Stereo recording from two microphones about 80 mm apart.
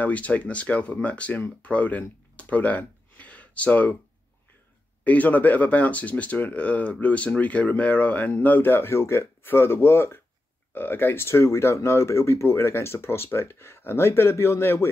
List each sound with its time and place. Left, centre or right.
0.0 s speech: centre
5.0 s speech: centre